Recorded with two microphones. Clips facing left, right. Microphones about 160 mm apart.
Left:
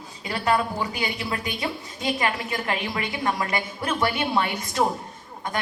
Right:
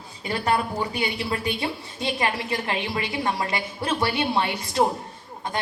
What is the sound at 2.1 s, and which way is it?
A woman's voice, 30° right (ahead or behind).